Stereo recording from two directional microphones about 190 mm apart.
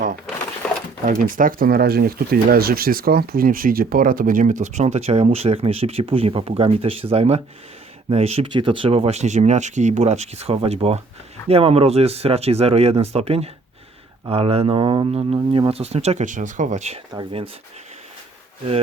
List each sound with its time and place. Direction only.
1.4 s speech: 45° right (ahead or behind); by 17.5 s 30° right (ahead or behind)